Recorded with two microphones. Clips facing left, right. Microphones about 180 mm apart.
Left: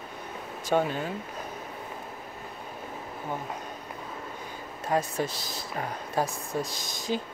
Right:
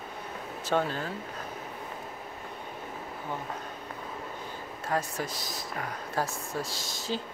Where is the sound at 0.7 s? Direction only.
15° left (ahead or behind).